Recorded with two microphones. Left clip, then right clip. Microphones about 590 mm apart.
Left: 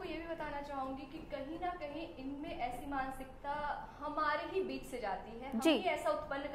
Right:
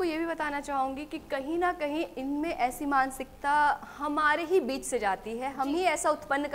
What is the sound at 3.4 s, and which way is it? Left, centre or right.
A woman's voice, right.